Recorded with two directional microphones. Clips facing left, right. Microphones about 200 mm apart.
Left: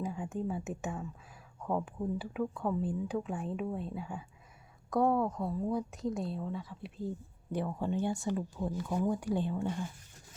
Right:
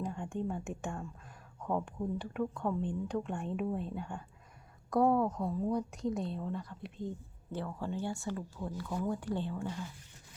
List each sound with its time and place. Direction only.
0.0 s speech: 5° left (ahead or behind)
7.6 s speech: 20° left (ahead or behind)